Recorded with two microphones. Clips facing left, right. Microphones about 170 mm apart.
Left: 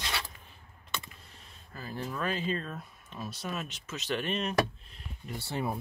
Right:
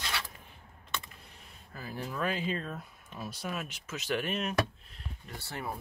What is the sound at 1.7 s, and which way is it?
Speech, 10° right (ahead or behind).